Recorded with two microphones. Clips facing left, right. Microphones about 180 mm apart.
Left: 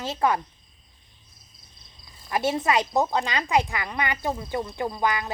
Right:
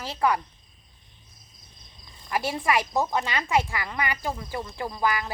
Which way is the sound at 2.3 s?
25° left (ahead or behind).